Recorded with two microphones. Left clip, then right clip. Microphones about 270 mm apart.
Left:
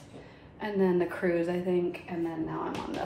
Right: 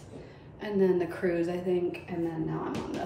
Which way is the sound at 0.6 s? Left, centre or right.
Centre.